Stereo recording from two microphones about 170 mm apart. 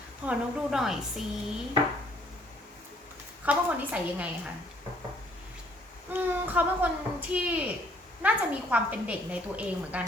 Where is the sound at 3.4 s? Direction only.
10° right (ahead or behind).